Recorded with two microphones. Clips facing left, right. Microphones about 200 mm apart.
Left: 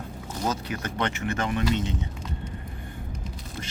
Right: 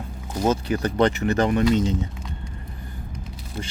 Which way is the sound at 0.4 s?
30° right (ahead or behind).